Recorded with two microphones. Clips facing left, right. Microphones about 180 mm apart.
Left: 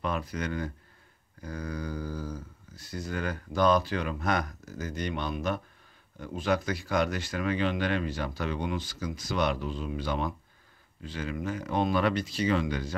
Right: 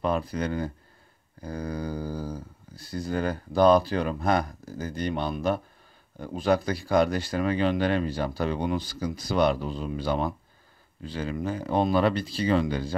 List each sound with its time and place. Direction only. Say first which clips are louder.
0.0 s speech: right 5 dB; 30° right (ahead or behind)